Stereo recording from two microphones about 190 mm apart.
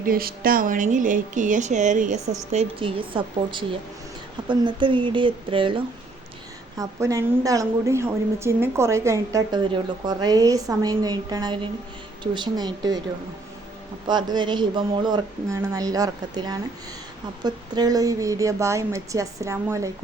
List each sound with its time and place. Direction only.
0.0 s speech: 50° right (ahead or behind); by 5.8 s 25° right (ahead or behind)
6.7 s a woman's voice: 15° right (ahead or behind)
14.1 s a woman's voice: 25° right (ahead or behind)